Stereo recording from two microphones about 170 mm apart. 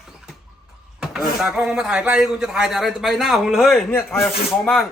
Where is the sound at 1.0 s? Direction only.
5° right (ahead or behind).